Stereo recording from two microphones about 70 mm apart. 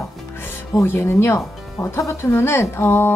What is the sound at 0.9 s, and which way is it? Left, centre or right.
A woman's voice, left.